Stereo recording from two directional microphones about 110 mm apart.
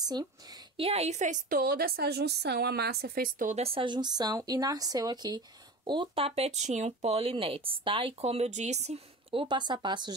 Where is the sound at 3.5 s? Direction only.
65° right (ahead or behind).